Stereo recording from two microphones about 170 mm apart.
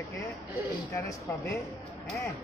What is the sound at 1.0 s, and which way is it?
Speech, 20° left (ahead or behind).